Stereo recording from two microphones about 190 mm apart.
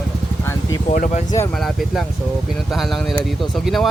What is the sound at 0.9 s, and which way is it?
Speech, 45° left (ahead or behind).